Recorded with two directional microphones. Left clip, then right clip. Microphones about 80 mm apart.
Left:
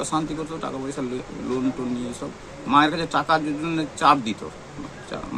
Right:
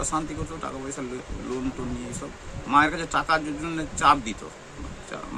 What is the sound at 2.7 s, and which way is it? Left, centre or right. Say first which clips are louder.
A man's voice: left 2 dB; right.